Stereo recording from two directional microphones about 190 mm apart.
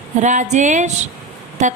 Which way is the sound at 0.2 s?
40° right (ahead or behind).